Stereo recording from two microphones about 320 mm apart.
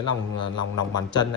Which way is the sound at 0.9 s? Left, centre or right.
Centre.